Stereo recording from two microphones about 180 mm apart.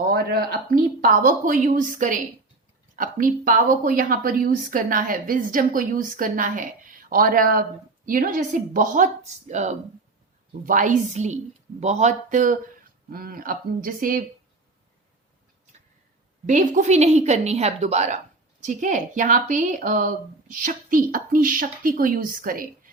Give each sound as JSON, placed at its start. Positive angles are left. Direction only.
{"t": 0.1, "sound": "a sound", "side_deg": -60}
{"t": 1.0, "sound": "speech", "side_deg": -50}
{"t": 16.5, "sound": "a woman's voice", "side_deg": -40}